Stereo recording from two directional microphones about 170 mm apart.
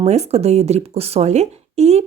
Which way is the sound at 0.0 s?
40° right (ahead or behind).